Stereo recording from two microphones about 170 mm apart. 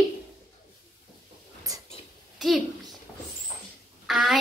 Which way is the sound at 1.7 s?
20° right (ahead or behind).